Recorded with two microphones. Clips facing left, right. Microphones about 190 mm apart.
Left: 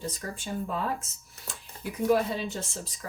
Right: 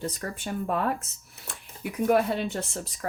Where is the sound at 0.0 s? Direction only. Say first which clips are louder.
Right 3 dB; 60° right (ahead or behind).